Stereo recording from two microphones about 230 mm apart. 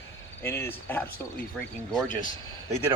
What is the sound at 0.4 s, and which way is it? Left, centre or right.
Speech, centre.